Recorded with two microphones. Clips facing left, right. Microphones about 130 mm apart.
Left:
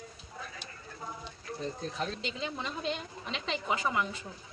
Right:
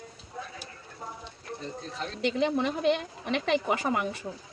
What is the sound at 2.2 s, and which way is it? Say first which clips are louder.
A woman's voice: right 11 dB; 65° right (ahead or behind).